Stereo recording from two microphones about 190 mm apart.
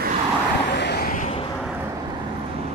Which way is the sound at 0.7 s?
60° left (ahead or behind).